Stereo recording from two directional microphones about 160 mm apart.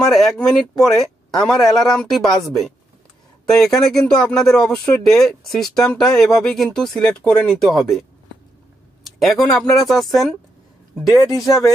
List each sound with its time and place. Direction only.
0.0 s speech: centre (ahead or behind)
11.3 s speech: 20° left (ahead or behind)